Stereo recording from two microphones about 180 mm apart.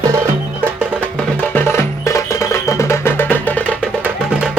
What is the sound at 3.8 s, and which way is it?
Music, 5° right (ahead or behind).